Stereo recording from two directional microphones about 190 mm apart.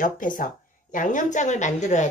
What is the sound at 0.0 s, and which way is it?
A woman's voice, 45° left (ahead or behind).